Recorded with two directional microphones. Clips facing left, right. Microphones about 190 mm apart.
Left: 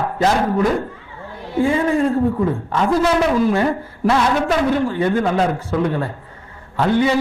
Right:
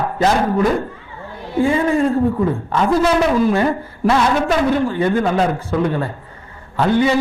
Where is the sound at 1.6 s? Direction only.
20° right (ahead or behind).